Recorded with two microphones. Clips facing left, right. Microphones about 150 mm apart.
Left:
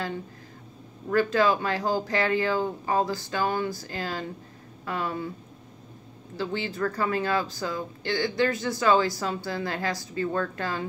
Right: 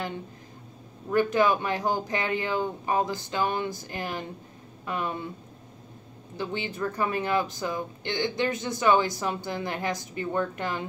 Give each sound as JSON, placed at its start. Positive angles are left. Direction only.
{"t": 1.1, "sound": "speech", "side_deg": -20}
{"t": 6.3, "sound": "speech", "side_deg": -20}